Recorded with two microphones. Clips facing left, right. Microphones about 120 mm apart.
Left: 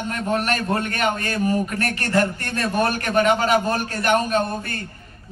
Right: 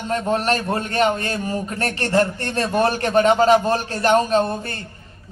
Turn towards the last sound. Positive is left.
turn(degrees=-30)  # may be behind; listen again after turning